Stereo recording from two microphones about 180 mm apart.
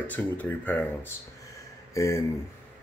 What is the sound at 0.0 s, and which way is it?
Speech, 10° left (ahead or behind).